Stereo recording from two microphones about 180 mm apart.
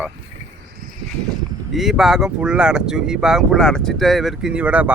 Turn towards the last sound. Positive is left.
turn(degrees=-5)  # may be behind; listen again after turning